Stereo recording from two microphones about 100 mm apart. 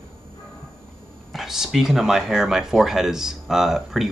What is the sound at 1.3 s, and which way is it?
Speech, 5° right (ahead or behind).